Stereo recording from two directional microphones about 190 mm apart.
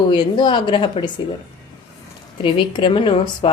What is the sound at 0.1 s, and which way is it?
Speech, 25° left (ahead or behind).